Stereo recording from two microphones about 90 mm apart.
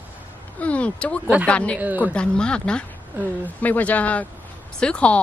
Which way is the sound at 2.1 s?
10° left (ahead or behind).